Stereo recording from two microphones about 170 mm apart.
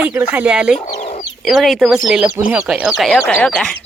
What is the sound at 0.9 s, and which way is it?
Chicken, 40° left (ahead or behind).